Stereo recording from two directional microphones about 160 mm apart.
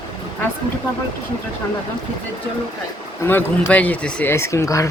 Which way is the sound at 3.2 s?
10° left (ahead or behind).